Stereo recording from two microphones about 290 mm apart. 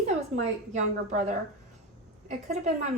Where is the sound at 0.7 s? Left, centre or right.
Right.